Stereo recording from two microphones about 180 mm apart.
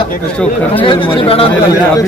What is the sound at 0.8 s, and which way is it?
Speech, 30° left (ahead or behind).